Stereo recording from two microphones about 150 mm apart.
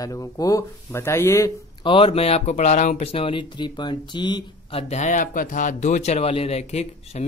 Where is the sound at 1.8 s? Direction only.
35° left (ahead or behind).